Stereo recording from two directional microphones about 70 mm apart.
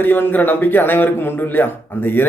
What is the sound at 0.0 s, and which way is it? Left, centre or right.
Speech, left.